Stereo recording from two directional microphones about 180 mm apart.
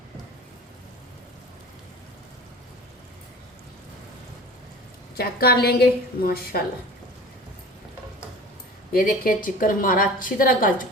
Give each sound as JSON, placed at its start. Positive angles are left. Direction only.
{"t": 5.1, "sound": "a woman's voice", "side_deg": 60}
{"t": 8.9, "sound": "a woman's voice", "side_deg": 55}